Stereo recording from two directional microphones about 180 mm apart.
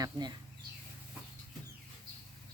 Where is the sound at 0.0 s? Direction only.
25° right (ahead or behind).